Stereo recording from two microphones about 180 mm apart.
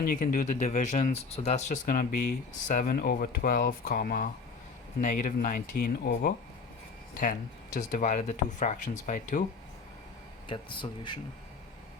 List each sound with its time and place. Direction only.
0.0 s speech: 55° left (ahead or behind)
10.5 s speech: 25° left (ahead or behind)